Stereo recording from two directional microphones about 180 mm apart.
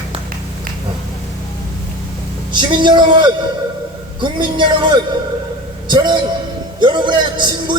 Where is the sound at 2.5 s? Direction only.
25° right (ahead or behind).